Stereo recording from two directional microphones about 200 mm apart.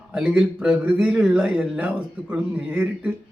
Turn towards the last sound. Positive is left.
turn(degrees=-10)  # may be behind; listen again after turning